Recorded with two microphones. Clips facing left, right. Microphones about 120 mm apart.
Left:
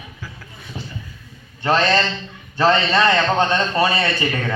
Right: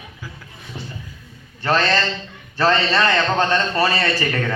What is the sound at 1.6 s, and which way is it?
A man's voice, 25° left (ahead or behind).